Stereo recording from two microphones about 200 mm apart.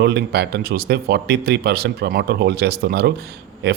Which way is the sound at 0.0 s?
55° right (ahead or behind).